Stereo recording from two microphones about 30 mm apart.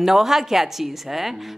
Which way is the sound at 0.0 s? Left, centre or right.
Centre.